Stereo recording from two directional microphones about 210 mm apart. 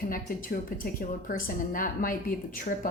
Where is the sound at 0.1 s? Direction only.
40° left (ahead or behind).